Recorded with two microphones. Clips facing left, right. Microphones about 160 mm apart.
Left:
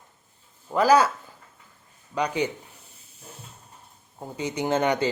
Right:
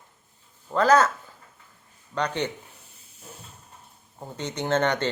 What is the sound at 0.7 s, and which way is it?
Speech, 10° left (ahead or behind).